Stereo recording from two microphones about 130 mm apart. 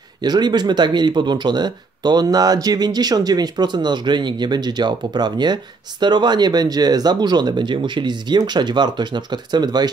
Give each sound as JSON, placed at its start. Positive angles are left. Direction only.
{"t": 0.2, "sound": "speech", "side_deg": -35}